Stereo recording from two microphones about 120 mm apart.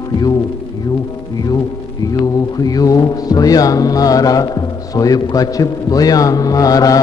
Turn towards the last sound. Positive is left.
turn(degrees=30)  # may be behind; listen again after turning